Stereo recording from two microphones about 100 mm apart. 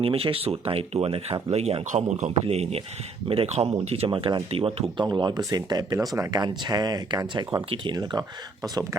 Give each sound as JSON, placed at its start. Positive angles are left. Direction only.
{"t": 0.0, "sound": "speech", "side_deg": -70}
{"t": 3.2, "sound": "speech", "side_deg": -80}
{"t": 5.0, "sound": "speech", "side_deg": -45}